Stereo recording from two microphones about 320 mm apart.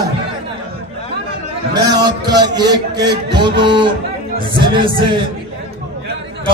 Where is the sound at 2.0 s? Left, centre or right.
Centre.